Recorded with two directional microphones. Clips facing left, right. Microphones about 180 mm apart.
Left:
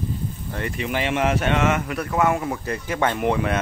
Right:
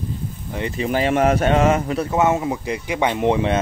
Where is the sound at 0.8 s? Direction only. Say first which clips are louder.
Right 5 dB; 40° right (ahead or behind).